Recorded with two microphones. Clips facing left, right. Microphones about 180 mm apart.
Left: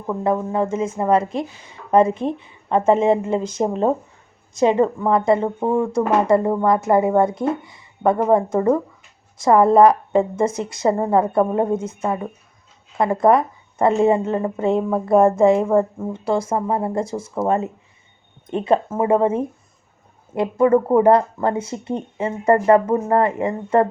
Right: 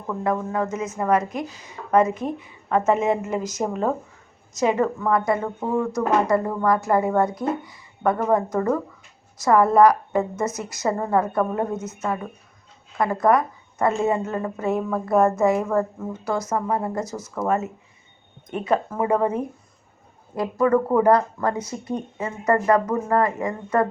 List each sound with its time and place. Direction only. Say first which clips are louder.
0.1 s speech: left 4 dB; 20° left (ahead or behind)